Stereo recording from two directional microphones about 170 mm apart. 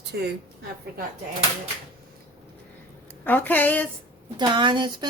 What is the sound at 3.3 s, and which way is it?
Speech, 10° left (ahead or behind).